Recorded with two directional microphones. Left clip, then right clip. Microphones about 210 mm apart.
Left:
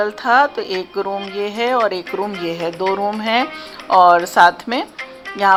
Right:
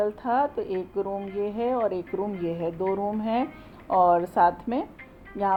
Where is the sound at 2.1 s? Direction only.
50° left (ahead or behind).